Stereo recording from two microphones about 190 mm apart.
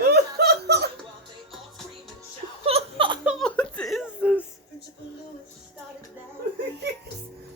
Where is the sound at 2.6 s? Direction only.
30° right (ahead or behind).